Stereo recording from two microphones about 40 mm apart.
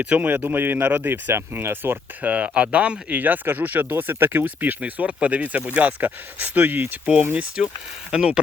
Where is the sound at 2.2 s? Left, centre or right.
Right.